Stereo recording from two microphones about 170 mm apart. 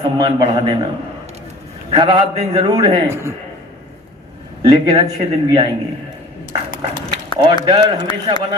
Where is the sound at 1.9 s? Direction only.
25° right (ahead or behind).